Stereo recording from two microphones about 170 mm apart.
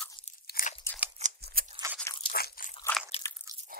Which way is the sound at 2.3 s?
65° left (ahead or behind).